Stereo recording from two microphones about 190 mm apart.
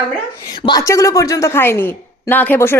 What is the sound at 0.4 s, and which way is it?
A woman's voice, 20° left (ahead or behind).